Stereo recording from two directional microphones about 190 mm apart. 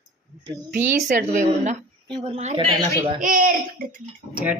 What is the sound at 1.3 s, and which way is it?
A woman's voice, 40° right (ahead or behind).